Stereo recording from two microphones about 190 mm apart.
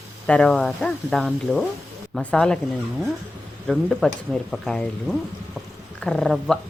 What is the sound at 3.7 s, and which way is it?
Speech, centre (ahead or behind).